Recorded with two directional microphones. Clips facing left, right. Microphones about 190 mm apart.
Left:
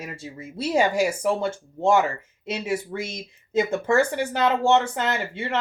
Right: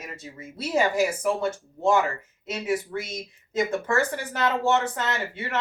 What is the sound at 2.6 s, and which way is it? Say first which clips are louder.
Speech: right 1 dB; 25° left (ahead or behind).